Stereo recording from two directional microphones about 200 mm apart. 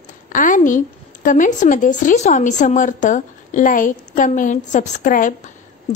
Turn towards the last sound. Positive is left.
turn(degrees=40)  # may be behind; listen again after turning